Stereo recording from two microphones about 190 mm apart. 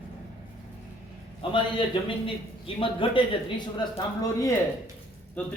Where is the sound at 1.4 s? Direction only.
25° left (ahead or behind).